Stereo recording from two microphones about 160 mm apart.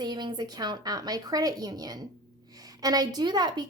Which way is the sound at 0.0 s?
25° right (ahead or behind).